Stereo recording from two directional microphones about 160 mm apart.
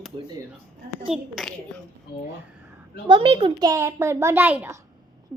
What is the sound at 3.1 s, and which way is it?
Speech, 30° right (ahead or behind).